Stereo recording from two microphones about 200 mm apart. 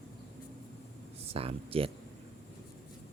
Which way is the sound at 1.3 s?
30° right (ahead or behind).